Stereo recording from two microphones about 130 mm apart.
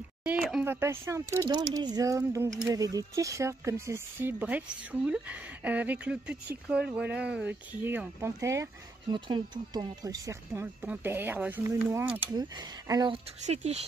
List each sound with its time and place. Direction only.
0.2 s a woman's voice: 15° right (ahead or behind)
1.5 s speech: 35° right (ahead or behind)
9.1 s speech: 35° right (ahead or behind)
13.1 s speech: 55° right (ahead or behind)